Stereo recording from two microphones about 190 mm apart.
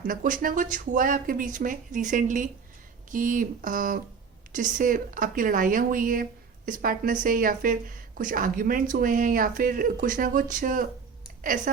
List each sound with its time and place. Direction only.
0.0 s a woman's voice: 45° right (ahead or behind)